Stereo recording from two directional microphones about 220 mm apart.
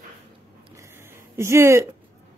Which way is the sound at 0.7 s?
10° right (ahead or behind).